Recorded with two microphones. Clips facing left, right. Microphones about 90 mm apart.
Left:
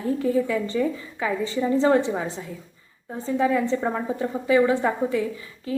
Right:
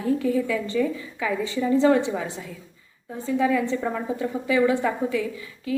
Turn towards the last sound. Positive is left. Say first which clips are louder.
# right 1 dB
turn(degrees=35)  # may be behind; listen again after turning